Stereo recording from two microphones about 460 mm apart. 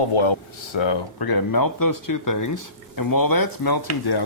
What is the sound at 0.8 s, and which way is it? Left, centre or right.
Speech, left.